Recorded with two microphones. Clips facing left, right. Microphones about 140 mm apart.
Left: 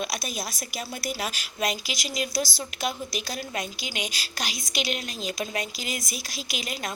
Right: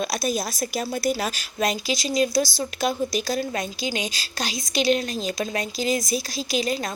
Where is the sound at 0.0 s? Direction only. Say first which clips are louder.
Right 7 dB; 35° right (ahead or behind).